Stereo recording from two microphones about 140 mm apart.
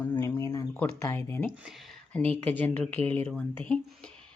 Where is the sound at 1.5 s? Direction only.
5° right (ahead or behind).